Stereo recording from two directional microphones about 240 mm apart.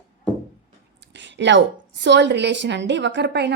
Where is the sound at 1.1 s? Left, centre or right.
Right.